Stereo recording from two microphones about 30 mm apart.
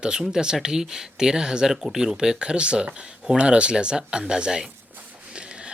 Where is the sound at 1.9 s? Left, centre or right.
Centre.